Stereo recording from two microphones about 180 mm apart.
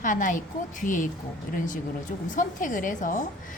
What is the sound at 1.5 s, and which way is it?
A woman's voice, 45° left (ahead or behind).